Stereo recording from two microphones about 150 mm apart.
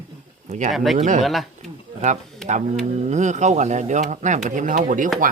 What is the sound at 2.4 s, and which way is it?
Speech, 50° right (ahead or behind).